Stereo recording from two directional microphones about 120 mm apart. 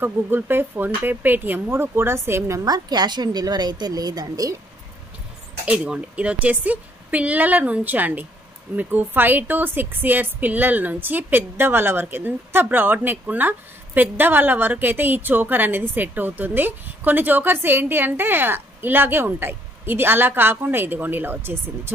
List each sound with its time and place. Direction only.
0.0 s speech: 15° right (ahead or behind)
5.7 s a woman's voice: 10° right (ahead or behind)